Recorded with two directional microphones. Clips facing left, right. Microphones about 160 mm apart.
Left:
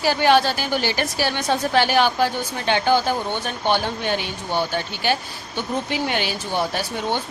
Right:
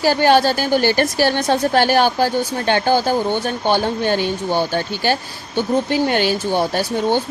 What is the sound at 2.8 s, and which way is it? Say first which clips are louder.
Speech: right 2 dB; 35° right (ahead or behind).